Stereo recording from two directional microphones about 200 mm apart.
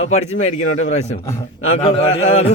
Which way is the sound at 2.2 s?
35° left (ahead or behind).